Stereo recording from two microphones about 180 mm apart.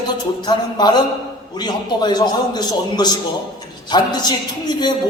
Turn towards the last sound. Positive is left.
turn(degrees=25)  # may be behind; listen again after turning